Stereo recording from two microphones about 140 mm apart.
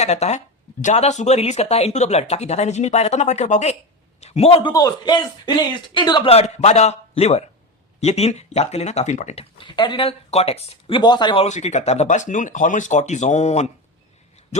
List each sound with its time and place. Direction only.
0.0 s speech: 55° left (ahead or behind)
4.7 s speech: 30° left (ahead or behind)
6.3 s speech: 50° left (ahead or behind); by 11.4 s 35° left (ahead or behind)
11.4 s speech: 55° left (ahead or behind)